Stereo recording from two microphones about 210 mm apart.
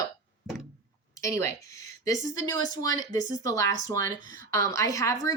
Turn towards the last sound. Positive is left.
turn(degrees=15)  # may be behind; listen again after turning